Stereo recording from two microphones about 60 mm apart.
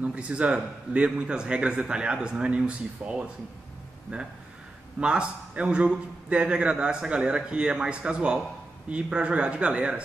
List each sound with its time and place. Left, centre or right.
0.0 s a man's voice: right